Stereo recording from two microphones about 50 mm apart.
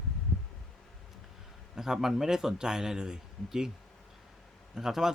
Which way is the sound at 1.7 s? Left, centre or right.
Centre.